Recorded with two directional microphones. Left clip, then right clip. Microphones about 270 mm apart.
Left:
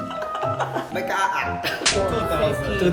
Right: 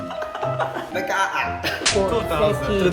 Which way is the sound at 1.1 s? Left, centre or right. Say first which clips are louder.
Even; centre.